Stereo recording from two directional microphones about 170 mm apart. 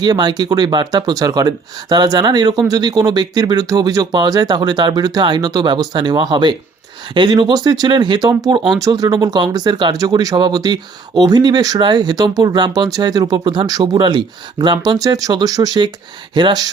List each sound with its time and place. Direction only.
0.0 s speech: 25° right (ahead or behind)